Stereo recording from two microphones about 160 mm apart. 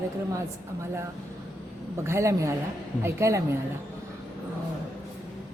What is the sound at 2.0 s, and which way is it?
Speech, 20° right (ahead or behind).